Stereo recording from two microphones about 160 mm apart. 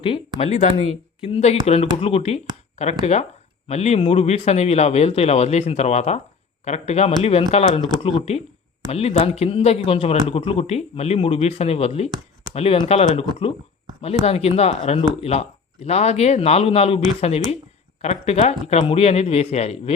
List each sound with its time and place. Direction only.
0.3 s speech: 45° left (ahead or behind)